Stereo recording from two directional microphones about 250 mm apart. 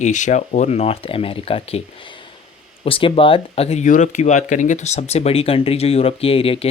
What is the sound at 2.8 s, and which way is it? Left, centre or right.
Speech, left.